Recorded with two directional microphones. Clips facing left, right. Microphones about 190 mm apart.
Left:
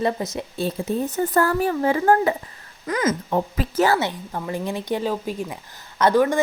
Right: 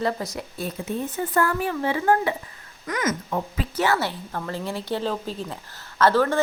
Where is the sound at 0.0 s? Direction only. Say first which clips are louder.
Left 3 dB; 20° left (ahead or behind); by 2.3 s 40° left (ahead or behind).